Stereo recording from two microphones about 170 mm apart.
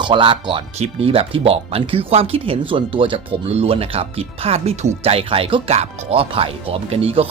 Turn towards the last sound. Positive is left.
turn(degrees=-35)  # may be behind; listen again after turning